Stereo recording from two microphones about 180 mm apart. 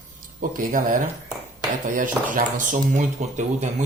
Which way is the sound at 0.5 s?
50° right (ahead or behind).